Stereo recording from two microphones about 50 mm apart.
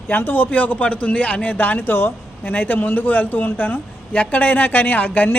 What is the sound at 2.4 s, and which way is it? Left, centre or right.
A man's voice, left.